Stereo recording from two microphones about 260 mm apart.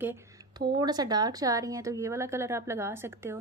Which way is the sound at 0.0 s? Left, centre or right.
Centre.